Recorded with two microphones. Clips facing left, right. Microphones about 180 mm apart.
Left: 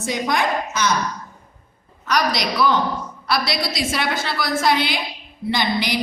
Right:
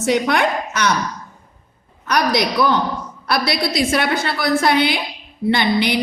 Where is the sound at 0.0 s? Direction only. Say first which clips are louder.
Right 5 dB; 65° right (ahead or behind).